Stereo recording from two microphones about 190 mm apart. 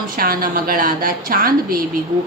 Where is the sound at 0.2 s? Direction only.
50° right (ahead or behind).